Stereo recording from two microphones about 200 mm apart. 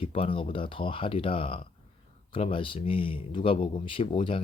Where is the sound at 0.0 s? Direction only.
25° left (ahead or behind).